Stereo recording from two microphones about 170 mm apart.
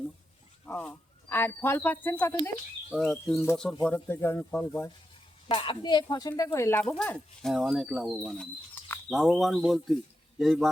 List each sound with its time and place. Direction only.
0.6 s speech: 10° left (ahead or behind)
5.5 s speech: 30° left (ahead or behind); by 10.7 s centre (ahead or behind)